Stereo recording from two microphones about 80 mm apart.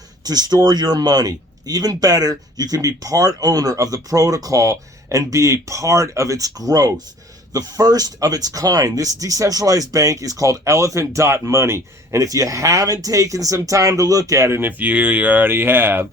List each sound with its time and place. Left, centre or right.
0.3 s speech: right